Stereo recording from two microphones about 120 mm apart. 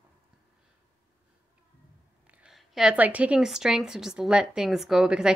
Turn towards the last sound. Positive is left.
turn(degrees=-5)  # may be behind; listen again after turning